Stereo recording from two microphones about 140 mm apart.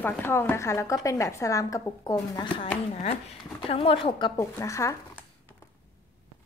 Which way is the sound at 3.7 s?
40° left (ahead or behind).